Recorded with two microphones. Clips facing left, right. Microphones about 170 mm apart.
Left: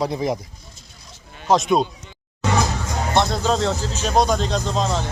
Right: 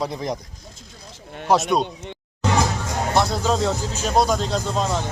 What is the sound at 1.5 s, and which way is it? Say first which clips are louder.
Speech: left 1 dB; 10° right (ahead or behind).